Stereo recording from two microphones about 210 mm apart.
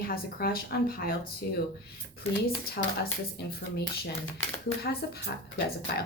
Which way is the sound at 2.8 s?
45° left (ahead or behind).